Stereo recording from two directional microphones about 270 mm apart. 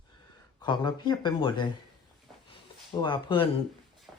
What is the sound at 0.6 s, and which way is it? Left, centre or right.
Speech, centre.